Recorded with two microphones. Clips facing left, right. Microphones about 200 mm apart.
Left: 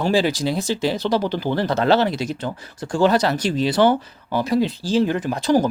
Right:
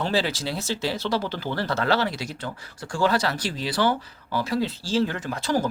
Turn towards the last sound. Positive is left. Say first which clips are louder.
# left 7 dB
turn(degrees=20)  # may be behind; listen again after turning